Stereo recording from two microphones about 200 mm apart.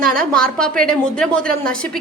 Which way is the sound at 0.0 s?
5° left (ahead or behind).